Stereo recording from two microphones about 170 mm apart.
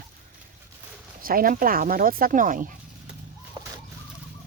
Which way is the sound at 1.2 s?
55° right (ahead or behind).